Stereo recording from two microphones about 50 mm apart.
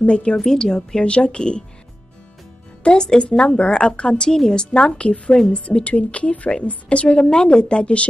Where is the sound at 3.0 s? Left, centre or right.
Centre.